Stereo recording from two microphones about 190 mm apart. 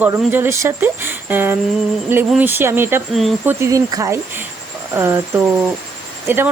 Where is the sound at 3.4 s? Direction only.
15° right (ahead or behind).